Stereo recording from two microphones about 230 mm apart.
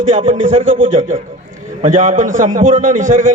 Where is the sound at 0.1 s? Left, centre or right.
Right.